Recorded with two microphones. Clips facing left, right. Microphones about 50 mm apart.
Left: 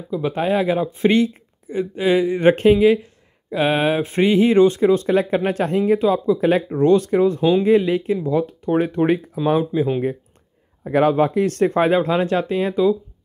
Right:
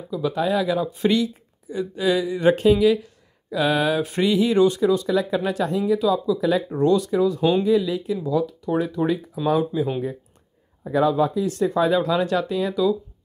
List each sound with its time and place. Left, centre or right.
0.1 s speech: left
10.9 s speech: left